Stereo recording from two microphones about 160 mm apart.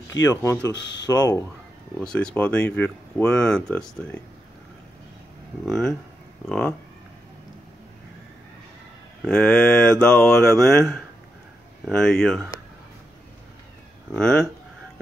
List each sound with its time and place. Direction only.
0.1 s speech: 25° left (ahead or behind)
2.0 s speech: 5° left (ahead or behind)
5.7 s mantra: centre (ahead or behind)
9.2 s mantra: 5° left (ahead or behind)
14.1 s mantra: 5° left (ahead or behind)